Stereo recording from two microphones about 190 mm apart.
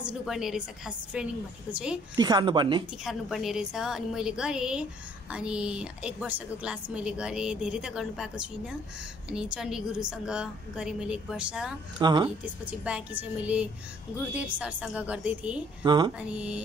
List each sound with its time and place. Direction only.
0.0 s a woman's voice: 5° right (ahead or behind)
2.1 s a woman's voice: 20° right (ahead or behind)
3.0 s a woman's voice: centre (ahead or behind)
12.0 s a woman's voice: 25° right (ahead or behind)
12.8 s a woman's voice: 5° right (ahead or behind)
15.8 s a woman's voice: 25° right (ahead or behind)
16.2 s a woman's voice: 5° right (ahead or behind)